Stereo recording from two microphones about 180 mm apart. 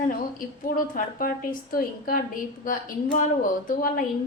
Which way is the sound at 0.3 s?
50° left (ahead or behind).